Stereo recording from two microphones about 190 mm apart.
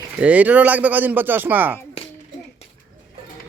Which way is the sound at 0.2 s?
5° right (ahead or behind).